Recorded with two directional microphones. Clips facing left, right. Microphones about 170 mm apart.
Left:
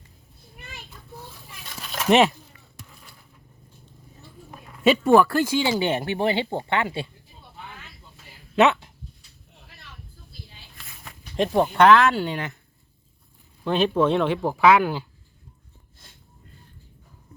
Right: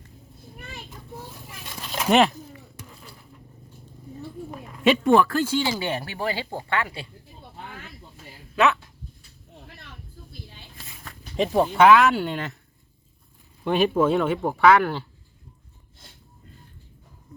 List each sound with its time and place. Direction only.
0.9 s children playing: 20° right (ahead or behind)
2.0 s speech: centre (ahead or behind)
4.8 s speech: centre (ahead or behind); by 7.1 s 25° left (ahead or behind)
8.5 s speech: 25° left (ahead or behind)
11.3 s speech: centre (ahead or behind)
13.7 s speech: 10° right (ahead or behind)